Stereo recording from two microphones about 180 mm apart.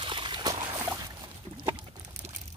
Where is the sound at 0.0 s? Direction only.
25° right (ahead or behind).